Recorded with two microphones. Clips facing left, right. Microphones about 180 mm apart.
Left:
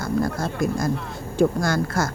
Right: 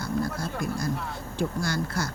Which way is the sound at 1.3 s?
50° left (ahead or behind).